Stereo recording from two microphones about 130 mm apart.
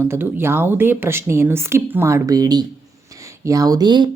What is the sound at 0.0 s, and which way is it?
A woman's voice, 15° right (ahead or behind).